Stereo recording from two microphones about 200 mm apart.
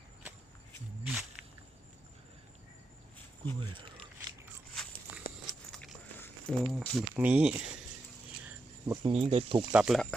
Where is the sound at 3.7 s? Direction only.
25° right (ahead or behind).